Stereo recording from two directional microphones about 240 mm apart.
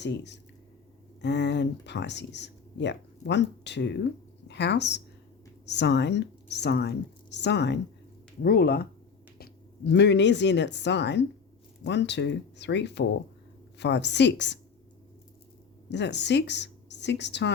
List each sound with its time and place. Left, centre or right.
1.2 s a woman's voice: left
15.9 s a woman's voice: left